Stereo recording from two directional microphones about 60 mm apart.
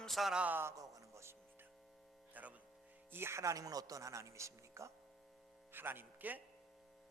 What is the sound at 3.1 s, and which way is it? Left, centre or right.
Speech, right.